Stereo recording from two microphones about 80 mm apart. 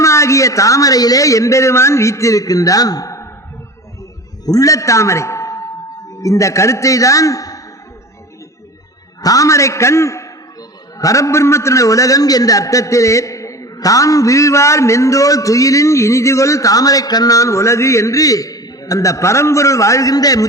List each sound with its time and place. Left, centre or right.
0.0 s a man's voice: left
4.4 s a man's voice: left
9.2 s a man's voice: left